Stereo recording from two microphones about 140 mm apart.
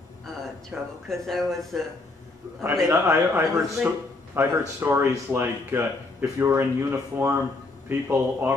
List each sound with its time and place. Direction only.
0.7 s speech: 5° right (ahead or behind)
2.6 s a man's voice: 20° right (ahead or behind)